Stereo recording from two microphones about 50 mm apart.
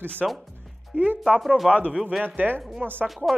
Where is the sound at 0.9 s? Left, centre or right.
Right.